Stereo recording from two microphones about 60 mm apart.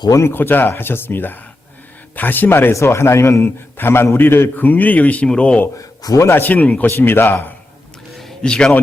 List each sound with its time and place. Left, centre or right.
0.1 s a man's voice: left
0.3 s a man's voice: left
2.7 s a man's voice: left
4.5 s speech: left
5.7 s a man's voice: left
6.3 s speech: left
6.8 s a man's voice: left
8.2 s a sound: centre